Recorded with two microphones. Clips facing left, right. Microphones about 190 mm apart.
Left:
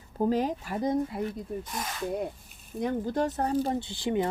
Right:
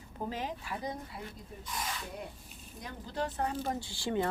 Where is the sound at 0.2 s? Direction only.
45° left (ahead or behind).